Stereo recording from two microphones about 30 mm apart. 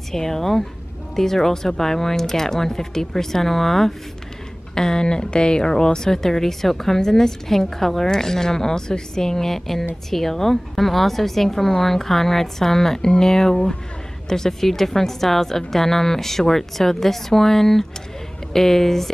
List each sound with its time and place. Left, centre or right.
0.1 s speech: centre
5.0 s speech: left; by 19.1 s centre